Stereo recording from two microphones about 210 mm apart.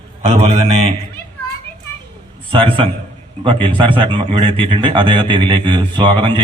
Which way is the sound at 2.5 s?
25° right (ahead or behind).